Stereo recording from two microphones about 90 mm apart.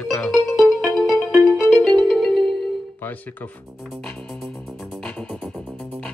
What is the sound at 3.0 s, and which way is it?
Speech, 20° left (ahead or behind).